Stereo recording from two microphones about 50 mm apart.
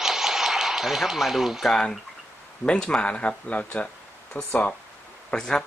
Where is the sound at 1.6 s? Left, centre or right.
Centre.